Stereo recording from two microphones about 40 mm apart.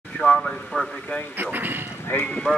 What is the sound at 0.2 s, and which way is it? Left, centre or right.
Speech, left.